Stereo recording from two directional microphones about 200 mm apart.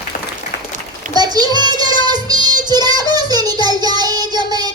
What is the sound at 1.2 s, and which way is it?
Child singing, 20° right (ahead or behind).